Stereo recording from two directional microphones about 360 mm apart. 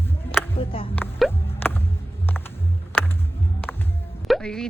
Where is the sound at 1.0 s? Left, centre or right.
Centre.